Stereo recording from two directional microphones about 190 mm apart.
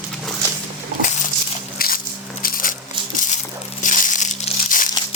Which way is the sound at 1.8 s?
50° left (ahead or behind).